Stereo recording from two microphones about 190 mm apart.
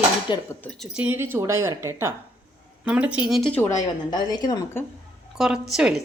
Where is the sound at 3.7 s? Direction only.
20° left (ahead or behind).